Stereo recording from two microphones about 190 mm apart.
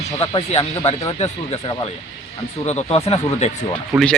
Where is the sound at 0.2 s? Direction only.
30° left (ahead or behind).